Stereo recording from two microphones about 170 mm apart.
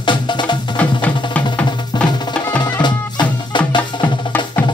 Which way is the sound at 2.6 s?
25° left (ahead or behind).